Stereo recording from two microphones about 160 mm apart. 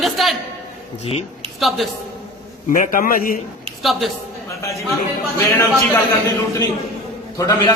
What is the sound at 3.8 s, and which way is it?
Speech, centre (ahead or behind).